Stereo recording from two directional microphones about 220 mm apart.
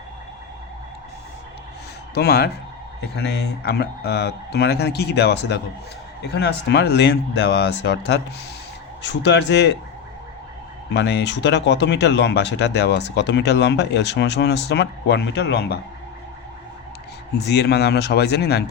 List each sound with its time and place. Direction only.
2.1 s speech: 45° left (ahead or behind)
10.9 s speech: 50° left (ahead or behind)
17.3 s speech: 50° left (ahead or behind)